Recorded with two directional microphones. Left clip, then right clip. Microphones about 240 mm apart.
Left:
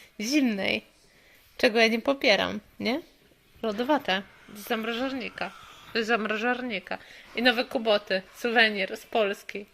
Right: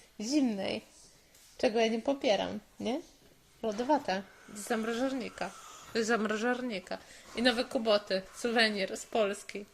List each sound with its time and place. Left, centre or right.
0.2 s a woman's voice: centre
4.7 s a woman's voice: centre